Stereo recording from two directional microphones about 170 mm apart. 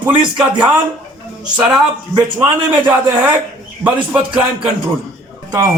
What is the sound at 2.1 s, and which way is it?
A man's voice, 10° right (ahead or behind).